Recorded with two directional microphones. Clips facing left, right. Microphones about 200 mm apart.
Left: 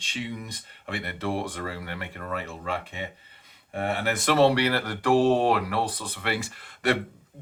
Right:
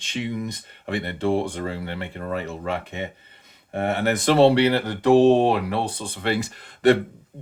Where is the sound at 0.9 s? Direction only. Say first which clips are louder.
Right 7 dB; 30° right (ahead or behind).